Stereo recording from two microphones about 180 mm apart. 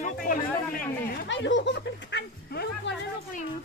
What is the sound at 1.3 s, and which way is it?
Speech, 90° left.